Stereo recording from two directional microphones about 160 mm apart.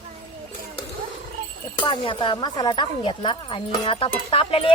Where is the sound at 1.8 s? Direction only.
30° left (ahead or behind).